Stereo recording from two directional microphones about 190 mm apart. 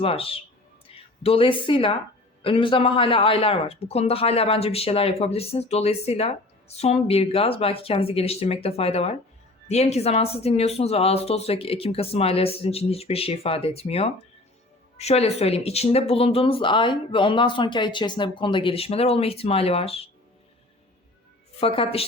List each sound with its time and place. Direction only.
0.0 s speech: 30° left (ahead or behind)
21.6 s speech: 30° left (ahead or behind)